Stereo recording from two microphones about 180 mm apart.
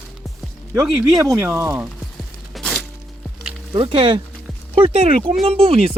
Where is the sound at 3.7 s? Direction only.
25° right (ahead or behind).